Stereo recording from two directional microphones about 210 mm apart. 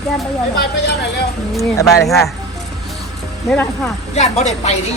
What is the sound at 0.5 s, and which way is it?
Speech, 50° left (ahead or behind).